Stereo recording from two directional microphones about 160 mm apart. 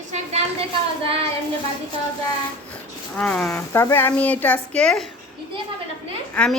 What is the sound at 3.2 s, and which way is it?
A woman's voice, 5° left (ahead or behind).